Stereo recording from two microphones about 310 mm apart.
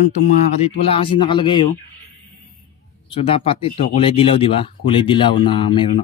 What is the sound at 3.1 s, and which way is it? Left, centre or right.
Speech, centre.